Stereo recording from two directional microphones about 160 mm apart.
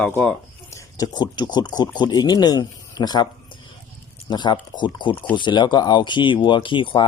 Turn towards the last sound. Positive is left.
turn(degrees=30)  # may be behind; listen again after turning